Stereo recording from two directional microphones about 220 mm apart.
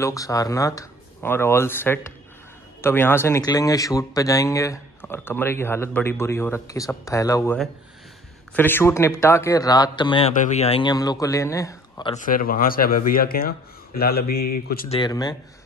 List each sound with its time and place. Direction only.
0.0 s speech: 15° left (ahead or behind)
8.5 s speech: 10° left (ahead or behind)
10.3 s a man's voice: 35° left (ahead or behind); by 12.1 s 15° left (ahead or behind)
12.2 s speech: 40° left (ahead or behind)
14.9 s a man's voice: 20° left (ahead or behind)